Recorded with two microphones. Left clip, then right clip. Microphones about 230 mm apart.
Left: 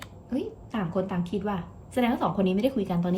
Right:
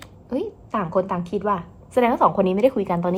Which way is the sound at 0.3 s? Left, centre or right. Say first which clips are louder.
Right 6 dB; centre.